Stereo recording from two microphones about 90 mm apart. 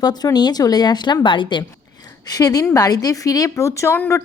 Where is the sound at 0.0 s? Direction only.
50° left (ahead or behind).